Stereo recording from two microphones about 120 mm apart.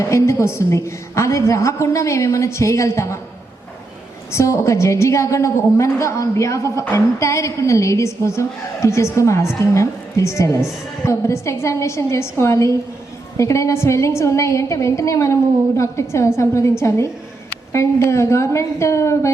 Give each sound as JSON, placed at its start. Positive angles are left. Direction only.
{"t": 0.0, "sound": "a woman's voice", "side_deg": 25}
{"t": 4.3, "sound": "a woman's voice", "side_deg": 25}